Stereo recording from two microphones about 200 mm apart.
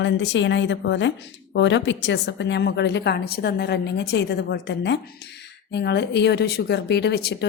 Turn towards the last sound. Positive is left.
turn(degrees=55)  # may be behind; listen again after turning